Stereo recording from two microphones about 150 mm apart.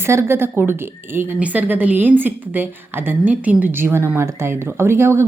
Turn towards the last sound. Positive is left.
turn(degrees=-15)  # may be behind; listen again after turning